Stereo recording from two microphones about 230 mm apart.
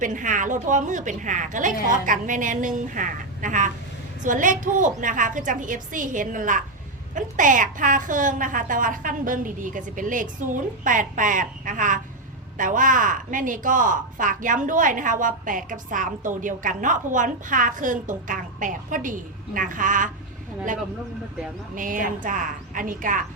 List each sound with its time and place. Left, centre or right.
0.0 s a woman's voice: right
21.8 s a woman's voice: right